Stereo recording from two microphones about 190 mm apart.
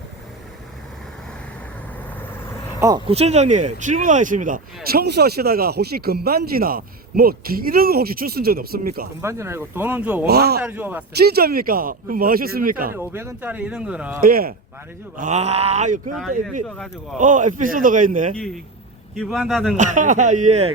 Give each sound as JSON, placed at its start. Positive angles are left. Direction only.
{"t": 3.1, "sound": "speech", "side_deg": -35}
{"t": 9.2, "sound": "speech", "side_deg": -15}
{"t": 10.2, "sound": "speech", "side_deg": -55}
{"t": 10.6, "sound": "speech", "side_deg": -10}
{"t": 11.2, "sound": "speech", "side_deg": -55}
{"t": 12.9, "sound": "speech", "side_deg": -10}
{"t": 14.2, "sound": "speech", "side_deg": -50}
{"t": 15.1, "sound": "speech", "side_deg": -40}
{"t": 16.6, "sound": "a man's voice", "side_deg": 5}
{"t": 17.2, "sound": "speech", "side_deg": -40}
{"t": 18.3, "sound": "a man's voice", "side_deg": 5}
{"t": 19.7, "sound": "speech", "side_deg": -40}